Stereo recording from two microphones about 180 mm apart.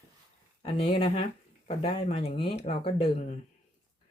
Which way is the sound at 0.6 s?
30° left (ahead or behind).